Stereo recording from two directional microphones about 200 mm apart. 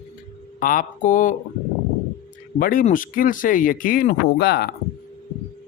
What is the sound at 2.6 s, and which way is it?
Speech, 45° left (ahead or behind).